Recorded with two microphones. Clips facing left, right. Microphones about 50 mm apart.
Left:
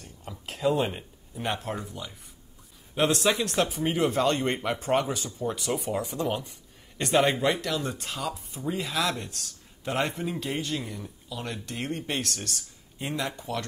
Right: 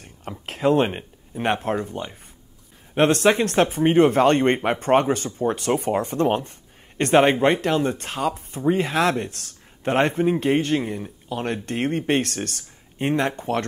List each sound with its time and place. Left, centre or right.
0.0 s speech: right